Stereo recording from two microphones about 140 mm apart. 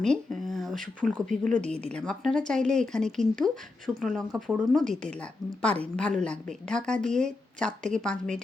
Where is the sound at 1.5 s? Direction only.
55° right (ahead or behind).